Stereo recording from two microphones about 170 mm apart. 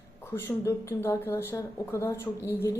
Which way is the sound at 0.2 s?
15° left (ahead or behind).